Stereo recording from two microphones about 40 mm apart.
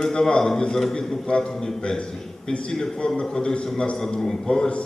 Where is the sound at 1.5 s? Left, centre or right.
Centre.